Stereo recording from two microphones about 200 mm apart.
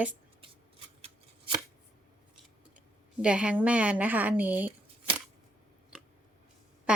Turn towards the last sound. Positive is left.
turn(degrees=-5)  # may be behind; listen again after turning